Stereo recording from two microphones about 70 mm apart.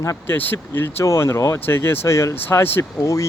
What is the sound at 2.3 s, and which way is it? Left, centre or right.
Speech, left.